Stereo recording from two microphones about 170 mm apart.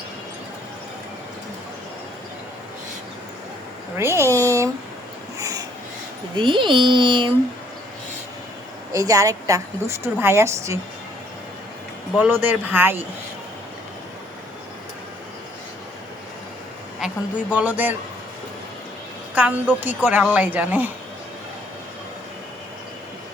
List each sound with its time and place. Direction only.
3.9 s a woman's voice: 15° right (ahead or behind)
4.4 s a sound: 15° right (ahead or behind)
5.4 s wheeze: 20° right (ahead or behind)
6.3 s speech: 30° right (ahead or behind)
8.9 s a woman's voice: 20° right (ahead or behind)
12.1 s a woman's voice: 10° right (ahead or behind)
17.0 s a sound: 5° right (ahead or behind)
17.5 s a woman's voice: 10° right (ahead or behind)
19.3 s a woman's voice: 10° right (ahead or behind)